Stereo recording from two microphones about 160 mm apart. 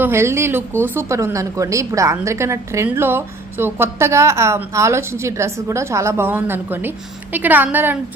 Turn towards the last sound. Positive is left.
turn(degrees=-10)  # may be behind; listen again after turning